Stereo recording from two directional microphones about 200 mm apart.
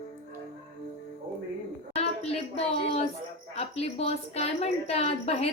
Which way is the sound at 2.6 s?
30° left (ahead or behind).